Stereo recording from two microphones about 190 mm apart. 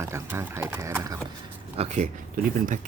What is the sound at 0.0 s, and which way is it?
Speech, 15° right (ahead or behind).